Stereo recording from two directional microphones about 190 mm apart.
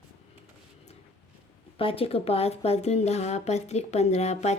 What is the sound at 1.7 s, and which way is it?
Speech, 30° left (ahead or behind).